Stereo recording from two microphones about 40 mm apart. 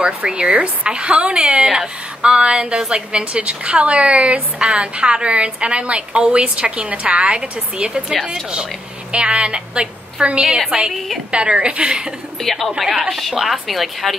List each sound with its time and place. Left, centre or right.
0.0 s a woman's voice: right
9.1 s a woman's voice: right
12.4 s a woman's voice: centre
12.7 s a woman's voice: centre